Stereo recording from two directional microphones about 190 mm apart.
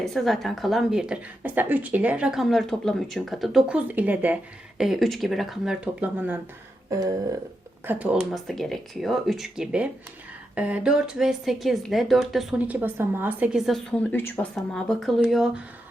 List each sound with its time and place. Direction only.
0.0 s speech: centre (ahead or behind)
6.9 s a sound: 20° right (ahead or behind)
7.9 s speech: 5° right (ahead or behind)